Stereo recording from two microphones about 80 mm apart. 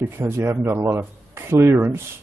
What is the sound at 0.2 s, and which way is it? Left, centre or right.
Speech, right.